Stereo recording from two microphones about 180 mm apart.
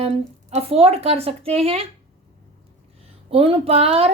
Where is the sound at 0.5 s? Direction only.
35° right (ahead or behind).